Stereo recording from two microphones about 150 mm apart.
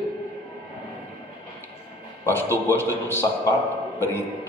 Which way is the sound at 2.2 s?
15° left (ahead or behind).